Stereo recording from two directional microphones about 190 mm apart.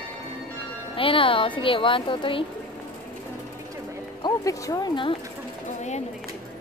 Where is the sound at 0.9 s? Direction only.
30° left (ahead or behind).